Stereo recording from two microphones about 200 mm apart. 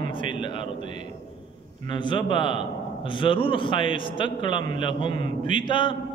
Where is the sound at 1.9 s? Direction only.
25° left (ahead or behind).